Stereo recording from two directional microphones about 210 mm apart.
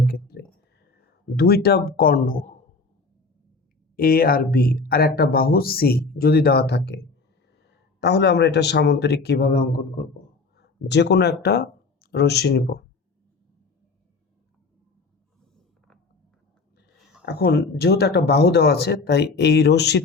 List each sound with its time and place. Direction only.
0.0 s a sound: 45° left (ahead or behind)
3.9 s speech: 45° left (ahead or behind)
17.2 s speech: 50° left (ahead or behind)